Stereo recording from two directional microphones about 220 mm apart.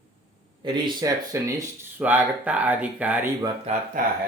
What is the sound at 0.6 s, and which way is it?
Speech, 20° right (ahead or behind).